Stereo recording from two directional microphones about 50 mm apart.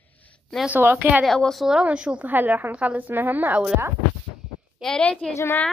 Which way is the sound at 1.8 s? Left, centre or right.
Centre.